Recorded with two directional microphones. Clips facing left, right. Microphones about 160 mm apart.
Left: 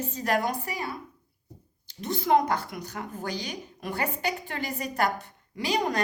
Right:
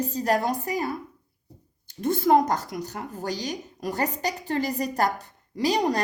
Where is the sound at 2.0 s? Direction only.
50° right (ahead or behind).